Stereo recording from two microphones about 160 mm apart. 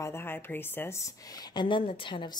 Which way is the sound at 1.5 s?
30° left (ahead or behind).